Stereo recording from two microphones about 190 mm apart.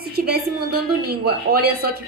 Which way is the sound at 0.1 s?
55° right (ahead or behind).